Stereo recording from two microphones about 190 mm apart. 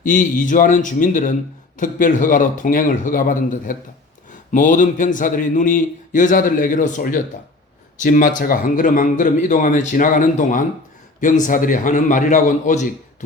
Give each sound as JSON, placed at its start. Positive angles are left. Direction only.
{"t": 0.0, "sound": "a man's voice", "side_deg": 45}